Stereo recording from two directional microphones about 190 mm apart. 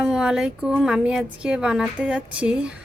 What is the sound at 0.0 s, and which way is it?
A woman's voice, 5° right (ahead or behind).